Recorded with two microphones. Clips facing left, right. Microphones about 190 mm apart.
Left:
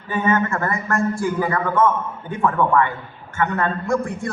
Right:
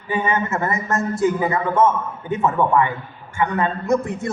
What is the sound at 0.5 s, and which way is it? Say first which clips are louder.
A man's voice: even; 20° right (ahead or behind).